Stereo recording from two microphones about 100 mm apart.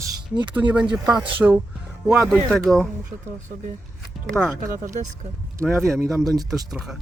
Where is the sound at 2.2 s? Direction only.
5° left (ahead or behind).